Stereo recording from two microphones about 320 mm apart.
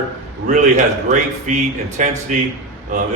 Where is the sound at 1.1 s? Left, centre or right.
Right.